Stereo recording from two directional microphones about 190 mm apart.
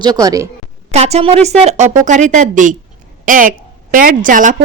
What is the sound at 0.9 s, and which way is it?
A woman's voice, 35° right (ahead or behind).